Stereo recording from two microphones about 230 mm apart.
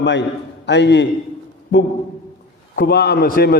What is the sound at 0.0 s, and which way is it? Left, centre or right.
A man's voice, left.